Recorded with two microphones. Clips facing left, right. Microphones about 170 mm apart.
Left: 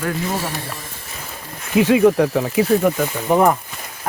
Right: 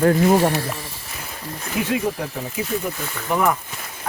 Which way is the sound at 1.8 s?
90° left.